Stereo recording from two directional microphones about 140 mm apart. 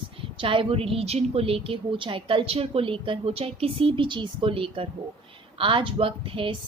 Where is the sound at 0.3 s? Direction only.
40° right (ahead or behind).